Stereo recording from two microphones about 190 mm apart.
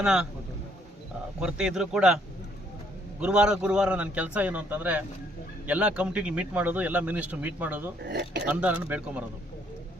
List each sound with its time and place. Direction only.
0.0 s speech: 5° right (ahead or behind)
1.4 s a man's voice: 5° right (ahead or behind)
8.0 s speech: 55° right (ahead or behind)
8.4 s a man's voice: 5° right (ahead or behind)